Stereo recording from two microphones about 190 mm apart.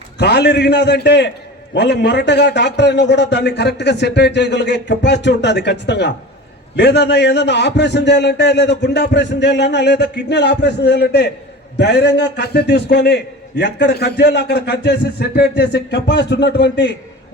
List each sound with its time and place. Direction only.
0.2 s a man's voice: 60° left (ahead or behind)